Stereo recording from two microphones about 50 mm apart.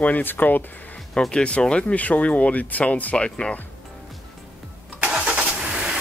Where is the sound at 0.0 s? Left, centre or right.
Left.